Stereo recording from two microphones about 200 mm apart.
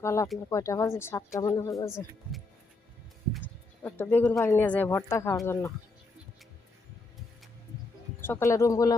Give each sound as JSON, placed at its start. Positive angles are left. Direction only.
{"t": 0.0, "sound": "speech", "side_deg": 15}
{"t": 3.8, "sound": "speech", "side_deg": 10}
{"t": 8.2, "sound": "speech", "side_deg": 15}